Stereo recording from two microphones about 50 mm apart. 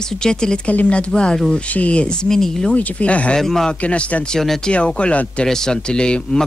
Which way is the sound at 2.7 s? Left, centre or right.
Left.